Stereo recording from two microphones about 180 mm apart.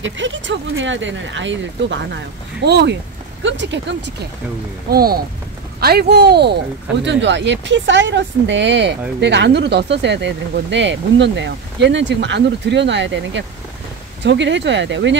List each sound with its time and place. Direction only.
0.0 s speech: 90° right; by 3.0 s 65° right (ahead or behind)
3.4 s speech: 85° right
4.8 s speech: 55° right (ahead or behind)
7.1 s speech: 80° right
14.2 s speech: 80° right